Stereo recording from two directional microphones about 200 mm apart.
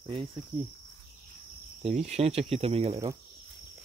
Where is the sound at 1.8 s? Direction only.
30° right (ahead or behind).